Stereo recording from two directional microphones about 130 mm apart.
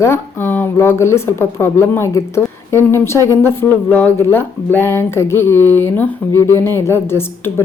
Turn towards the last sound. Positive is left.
turn(degrees=20)  # may be behind; listen again after turning